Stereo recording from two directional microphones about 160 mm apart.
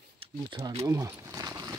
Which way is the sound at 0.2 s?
30° right (ahead or behind).